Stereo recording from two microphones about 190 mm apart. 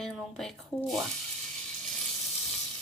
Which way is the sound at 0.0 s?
Centre (ahead or behind).